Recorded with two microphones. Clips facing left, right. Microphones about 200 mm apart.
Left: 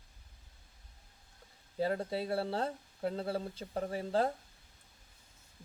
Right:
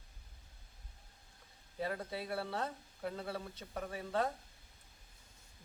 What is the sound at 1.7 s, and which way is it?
Speech, 30° left (ahead or behind).